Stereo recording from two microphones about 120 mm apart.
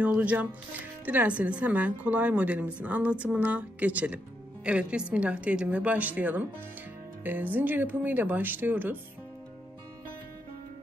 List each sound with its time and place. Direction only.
0.0 s a woman's voice: 10° right (ahead or behind)